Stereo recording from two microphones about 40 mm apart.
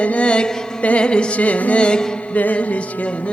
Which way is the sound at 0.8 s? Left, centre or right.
Left.